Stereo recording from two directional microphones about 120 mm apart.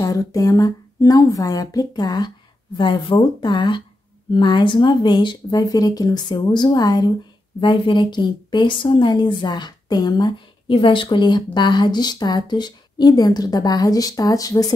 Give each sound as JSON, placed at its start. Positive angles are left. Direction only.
{"t": 0.0, "sound": "a woman's voice", "side_deg": 30}